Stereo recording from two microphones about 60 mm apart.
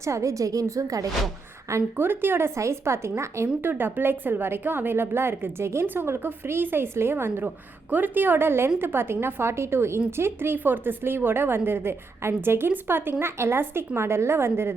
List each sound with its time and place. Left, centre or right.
0.0 s a woman's voice: right
2.0 s a woman's voice: right
2.6 s a woman's voice: right
3.6 s a woman's voice: right